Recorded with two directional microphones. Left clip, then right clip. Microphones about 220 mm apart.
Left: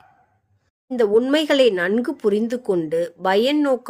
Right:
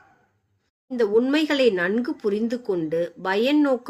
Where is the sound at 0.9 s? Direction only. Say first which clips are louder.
Left 3 dB; 55° left (ahead or behind).